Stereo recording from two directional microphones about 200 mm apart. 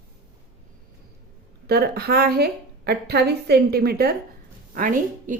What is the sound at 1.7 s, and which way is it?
A woman's voice, 50° right (ahead or behind).